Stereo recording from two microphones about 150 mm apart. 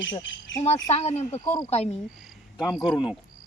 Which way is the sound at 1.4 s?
25° left (ahead or behind).